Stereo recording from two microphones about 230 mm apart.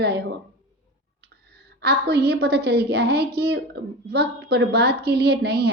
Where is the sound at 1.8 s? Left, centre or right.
Right.